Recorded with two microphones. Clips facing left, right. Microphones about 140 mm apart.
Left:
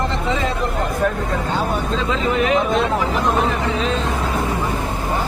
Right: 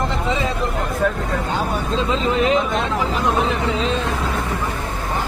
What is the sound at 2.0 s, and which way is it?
Speech, 25° right (ahead or behind).